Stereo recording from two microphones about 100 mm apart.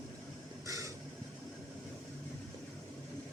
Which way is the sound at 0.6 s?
35° right (ahead or behind).